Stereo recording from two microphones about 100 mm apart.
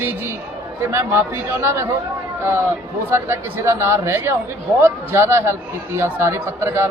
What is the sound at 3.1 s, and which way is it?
A man's voice, 25° right (ahead or behind).